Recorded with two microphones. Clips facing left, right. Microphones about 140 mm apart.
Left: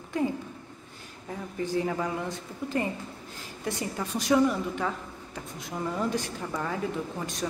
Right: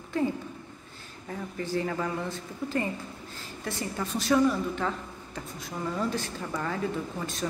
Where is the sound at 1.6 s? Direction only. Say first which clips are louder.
Left 2 dB; 15° left (ahead or behind).